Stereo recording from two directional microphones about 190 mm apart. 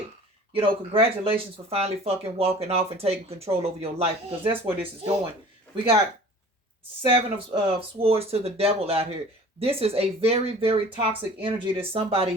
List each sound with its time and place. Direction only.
0.5 s speech: 30° right (ahead or behind)
7.1 s speech: 30° right (ahead or behind)